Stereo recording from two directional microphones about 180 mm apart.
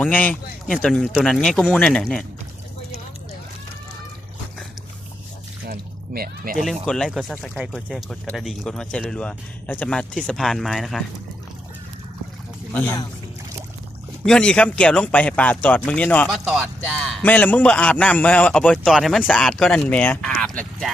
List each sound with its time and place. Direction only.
0.0 s a man's voice: 10° left (ahead or behind)
5.6 s a sound: 60° right (ahead or behind)
6.6 s a man's voice: centre (ahead or behind)
12.7 s speech: 10° left (ahead or behind)
14.3 s a man's voice: 5° left (ahead or behind)